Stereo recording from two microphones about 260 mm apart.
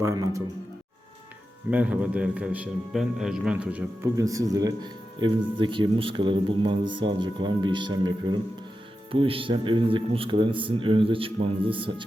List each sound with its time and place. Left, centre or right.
0.0 s a man's voice: centre
1.7 s a man's voice: centre